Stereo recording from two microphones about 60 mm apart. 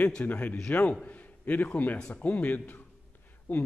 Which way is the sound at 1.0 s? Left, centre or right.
Left.